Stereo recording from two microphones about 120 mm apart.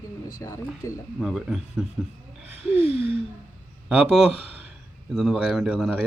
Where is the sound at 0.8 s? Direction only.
30° left (ahead or behind).